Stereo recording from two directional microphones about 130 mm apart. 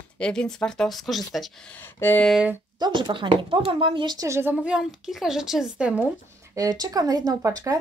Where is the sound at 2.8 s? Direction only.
40° right (ahead or behind).